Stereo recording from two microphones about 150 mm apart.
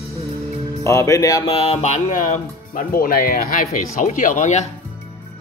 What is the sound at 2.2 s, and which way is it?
Speech, 65° left (ahead or behind).